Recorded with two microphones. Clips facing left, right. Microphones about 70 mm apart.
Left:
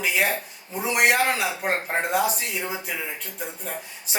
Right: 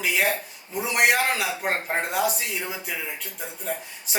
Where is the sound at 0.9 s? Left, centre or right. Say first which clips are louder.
Left 1 dB; centre.